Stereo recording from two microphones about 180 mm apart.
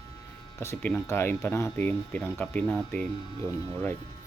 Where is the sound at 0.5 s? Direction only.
15° left (ahead or behind).